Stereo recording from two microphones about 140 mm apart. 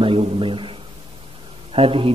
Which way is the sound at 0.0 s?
40° right (ahead or behind).